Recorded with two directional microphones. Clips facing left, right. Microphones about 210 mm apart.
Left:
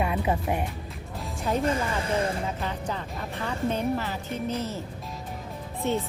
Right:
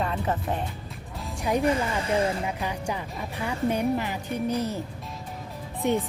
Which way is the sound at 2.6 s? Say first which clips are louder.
Right 1 dB; 10° right (ahead or behind).